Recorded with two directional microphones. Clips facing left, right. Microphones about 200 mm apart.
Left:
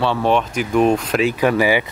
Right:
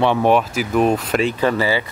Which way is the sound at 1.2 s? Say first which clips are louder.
Left 4 dB; 10° left (ahead or behind).